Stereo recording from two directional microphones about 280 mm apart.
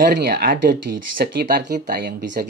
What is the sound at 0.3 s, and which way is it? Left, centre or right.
Speech, right.